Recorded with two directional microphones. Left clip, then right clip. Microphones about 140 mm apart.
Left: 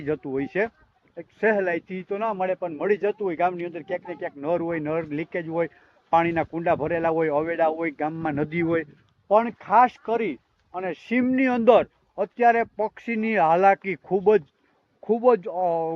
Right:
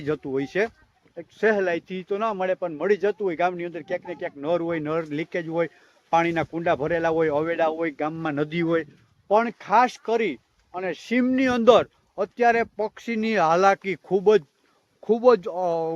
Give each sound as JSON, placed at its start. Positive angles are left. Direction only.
{"t": 0.0, "sound": "speech", "side_deg": -45}
{"t": 15.0, "sound": "speech", "side_deg": -70}
{"t": 15.5, "sound": "speech", "side_deg": -50}